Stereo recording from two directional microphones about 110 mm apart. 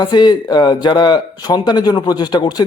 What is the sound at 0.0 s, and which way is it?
Speech, 40° left (ahead or behind).